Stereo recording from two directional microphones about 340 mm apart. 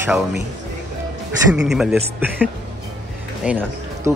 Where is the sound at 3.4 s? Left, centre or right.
Centre.